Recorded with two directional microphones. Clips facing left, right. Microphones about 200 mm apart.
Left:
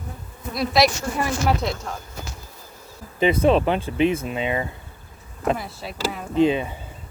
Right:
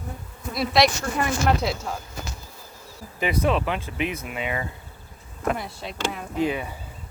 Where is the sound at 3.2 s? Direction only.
25° left (ahead or behind).